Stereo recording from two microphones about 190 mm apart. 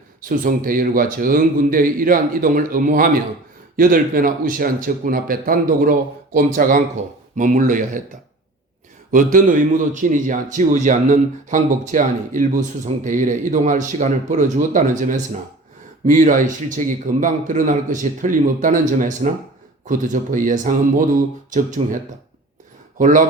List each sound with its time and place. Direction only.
0.2 s a man's voice: 45° right (ahead or behind)
9.1 s a man's voice: 45° right (ahead or behind)
21.8 s a man's voice: 30° right (ahead or behind)
23.0 s a man's voice: 40° right (ahead or behind)